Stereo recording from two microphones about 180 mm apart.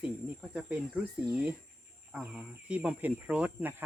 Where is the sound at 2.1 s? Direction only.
5° right (ahead or behind).